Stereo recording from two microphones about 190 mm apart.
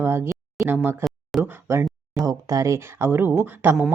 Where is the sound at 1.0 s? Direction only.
Centre (ahead or behind).